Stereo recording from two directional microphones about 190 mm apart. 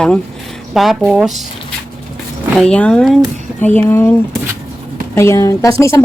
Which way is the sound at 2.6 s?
5° left (ahead or behind).